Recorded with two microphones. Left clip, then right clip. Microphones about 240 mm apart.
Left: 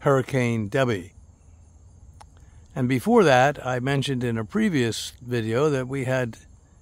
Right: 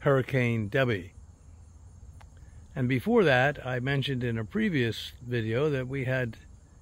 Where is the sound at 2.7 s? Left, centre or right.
Left.